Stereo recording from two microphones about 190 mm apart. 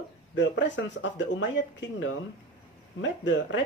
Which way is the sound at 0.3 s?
70° left (ahead or behind).